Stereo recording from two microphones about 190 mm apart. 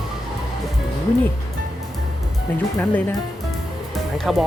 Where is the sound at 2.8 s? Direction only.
10° left (ahead or behind).